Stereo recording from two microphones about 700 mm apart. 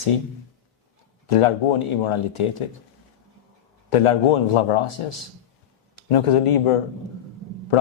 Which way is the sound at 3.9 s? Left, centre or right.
Left.